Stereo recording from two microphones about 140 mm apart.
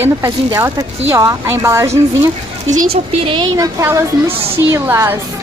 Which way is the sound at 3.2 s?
35° right (ahead or behind).